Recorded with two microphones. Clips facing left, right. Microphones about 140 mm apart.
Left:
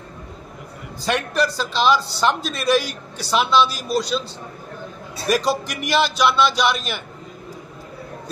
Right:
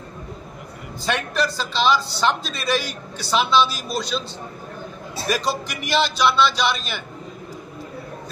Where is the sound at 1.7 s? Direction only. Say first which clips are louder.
Left 2 dB; 45° left (ahead or behind).